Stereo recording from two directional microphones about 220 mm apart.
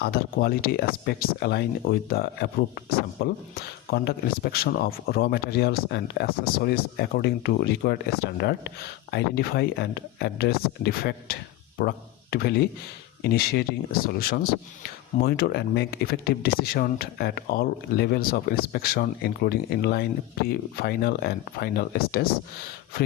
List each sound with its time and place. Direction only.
0.0 s speech: 45° left (ahead or behind)